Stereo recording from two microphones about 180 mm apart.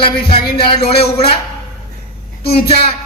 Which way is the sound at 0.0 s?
30° left (ahead or behind).